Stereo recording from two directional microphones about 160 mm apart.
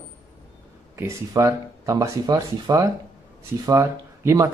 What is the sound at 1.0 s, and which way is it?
A man's voice, 20° right (ahead or behind).